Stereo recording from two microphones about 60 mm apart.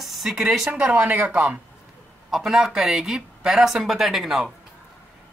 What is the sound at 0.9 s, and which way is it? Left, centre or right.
Speech, right.